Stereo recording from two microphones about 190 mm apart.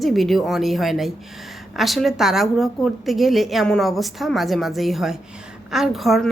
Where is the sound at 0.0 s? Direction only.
Centre (ahead or behind).